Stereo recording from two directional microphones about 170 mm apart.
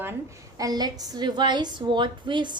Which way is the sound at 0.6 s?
25° right (ahead or behind).